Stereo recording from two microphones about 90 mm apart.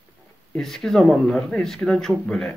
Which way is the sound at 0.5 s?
5° left (ahead or behind).